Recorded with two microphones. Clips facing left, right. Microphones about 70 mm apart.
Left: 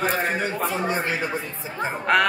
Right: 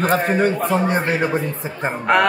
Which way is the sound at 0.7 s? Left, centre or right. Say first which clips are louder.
Right 6 dB; right.